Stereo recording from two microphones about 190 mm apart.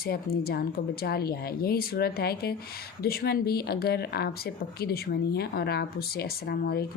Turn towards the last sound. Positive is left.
turn(degrees=55)  # may be behind; listen again after turning